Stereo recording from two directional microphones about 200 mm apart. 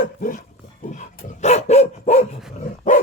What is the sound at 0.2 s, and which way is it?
Dog, 45° left (ahead or behind).